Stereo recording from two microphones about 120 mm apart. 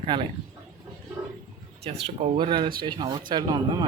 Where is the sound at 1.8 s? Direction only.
60° right (ahead or behind).